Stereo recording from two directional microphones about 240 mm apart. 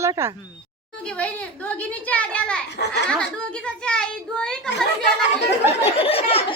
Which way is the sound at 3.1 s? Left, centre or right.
Centre.